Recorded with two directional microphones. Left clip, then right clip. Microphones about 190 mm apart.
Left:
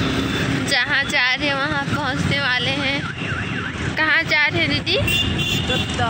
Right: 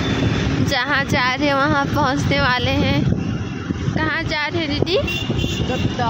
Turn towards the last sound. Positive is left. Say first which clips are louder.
# even
turn(degrees=-20)  # may be behind; listen again after turning